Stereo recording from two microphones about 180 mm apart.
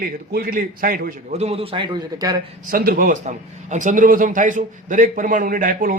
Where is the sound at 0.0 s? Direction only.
55° right (ahead or behind).